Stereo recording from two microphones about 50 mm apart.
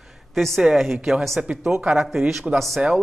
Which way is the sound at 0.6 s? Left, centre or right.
Centre.